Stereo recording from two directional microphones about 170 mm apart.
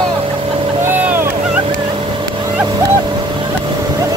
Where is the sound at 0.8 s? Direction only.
15° right (ahead or behind).